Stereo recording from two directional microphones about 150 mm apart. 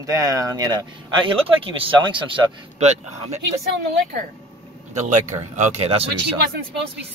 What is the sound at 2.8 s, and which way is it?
Speech, 50° right (ahead or behind).